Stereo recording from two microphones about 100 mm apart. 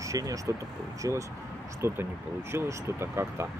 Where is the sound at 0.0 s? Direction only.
35° right (ahead or behind).